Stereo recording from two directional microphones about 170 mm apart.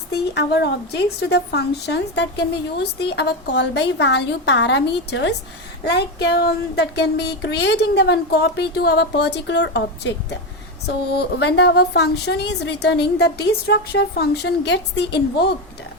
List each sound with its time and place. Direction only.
0.1 s a woman's voice: 80° left
5.8 s a sound: 75° left (ahead or behind)
10.8 s a woman's voice: 75° left (ahead or behind)